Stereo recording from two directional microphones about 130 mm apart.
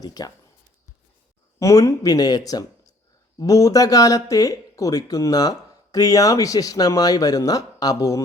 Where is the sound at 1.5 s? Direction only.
25° left (ahead or behind).